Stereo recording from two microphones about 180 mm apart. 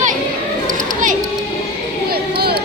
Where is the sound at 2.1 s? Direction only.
60° right (ahead or behind).